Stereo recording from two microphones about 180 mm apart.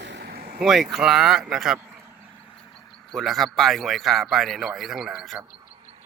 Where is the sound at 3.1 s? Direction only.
Centre (ahead or behind).